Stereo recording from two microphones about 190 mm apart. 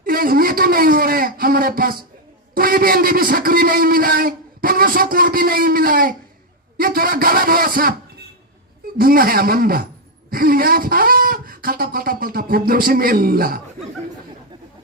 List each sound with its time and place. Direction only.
0.0 s a man's voice: 50° right (ahead or behind)
9.0 s speech: 50° right (ahead or behind)